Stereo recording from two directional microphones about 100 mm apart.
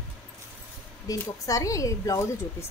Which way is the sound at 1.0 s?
35° left (ahead or behind).